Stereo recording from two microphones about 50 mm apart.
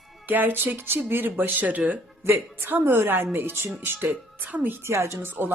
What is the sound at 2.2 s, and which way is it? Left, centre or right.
A woman's voice, right.